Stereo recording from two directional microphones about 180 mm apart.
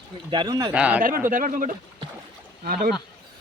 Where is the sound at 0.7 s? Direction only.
5° right (ahead or behind).